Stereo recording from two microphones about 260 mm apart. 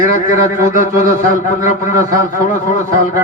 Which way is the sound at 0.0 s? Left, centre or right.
Left.